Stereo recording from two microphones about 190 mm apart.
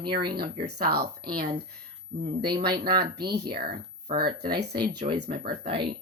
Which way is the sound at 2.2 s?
25° right (ahead or behind).